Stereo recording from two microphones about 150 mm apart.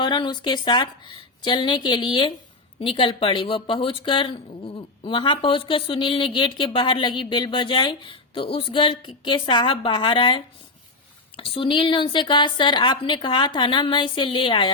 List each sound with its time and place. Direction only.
0.0 s speech: 30° left (ahead or behind)